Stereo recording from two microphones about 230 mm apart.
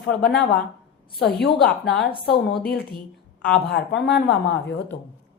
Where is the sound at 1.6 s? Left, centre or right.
Centre.